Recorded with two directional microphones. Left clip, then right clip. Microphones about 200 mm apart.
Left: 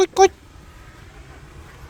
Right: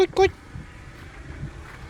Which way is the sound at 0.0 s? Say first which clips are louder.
Left 5 dB; 35° left (ahead or behind).